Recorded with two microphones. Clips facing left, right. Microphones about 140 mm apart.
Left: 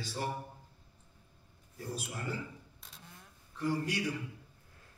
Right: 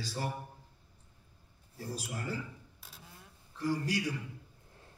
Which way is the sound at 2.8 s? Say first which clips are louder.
Even; 5° right (ahead or behind).